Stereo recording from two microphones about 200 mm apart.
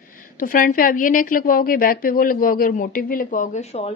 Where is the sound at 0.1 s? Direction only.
45° left (ahead or behind).